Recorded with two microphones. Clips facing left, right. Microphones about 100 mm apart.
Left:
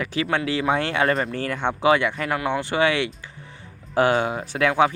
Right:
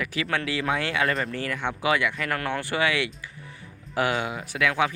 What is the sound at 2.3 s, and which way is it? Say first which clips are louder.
Speech: left 4 dB; 20° left (ahead or behind).